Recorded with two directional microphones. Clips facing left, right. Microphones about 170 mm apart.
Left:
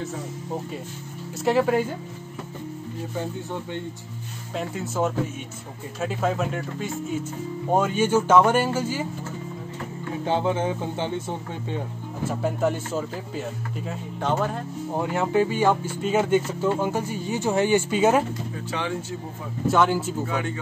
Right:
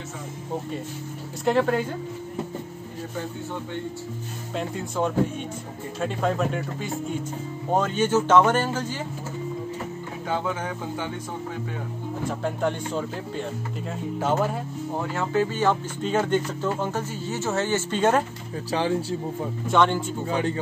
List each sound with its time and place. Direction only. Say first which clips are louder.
1.4 s speech: left 1 dB; 5° left (ahead or behind)
4.6 s speech: left 1 dB; 5° left (ahead or behind)
10.2 s speech: left 5 dB; 25° left (ahead or behind)
12.3 s speech: left 3 dB; 5° left (ahead or behind)
14.2 s speech: right 1 dB; 5° right (ahead or behind)
15.0 s speech: left 3 dB; 15° left (ahead or behind)
18.7 s speech: right 6 dB; 30° right (ahead or behind)
19.7 s speech: even; 5° left (ahead or behind)
20.2 s speech: right 3 dB; 30° right (ahead or behind)